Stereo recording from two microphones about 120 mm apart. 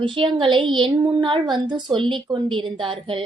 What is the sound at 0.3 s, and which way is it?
A woman's voice, 45° right (ahead or behind).